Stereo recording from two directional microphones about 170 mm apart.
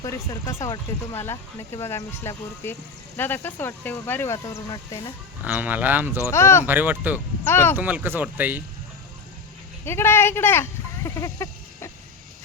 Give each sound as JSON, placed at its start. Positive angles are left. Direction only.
{"t": 0.0, "sound": "speech", "side_deg": 20}
{"t": 5.4, "sound": "speech", "side_deg": -10}
{"t": 6.3, "sound": "speech", "side_deg": 15}
{"t": 6.7, "sound": "speech", "side_deg": -10}
{"t": 7.4, "sound": "speech", "side_deg": 15}
{"t": 7.8, "sound": "speech", "side_deg": -10}
{"t": 9.8, "sound": "speech", "side_deg": 15}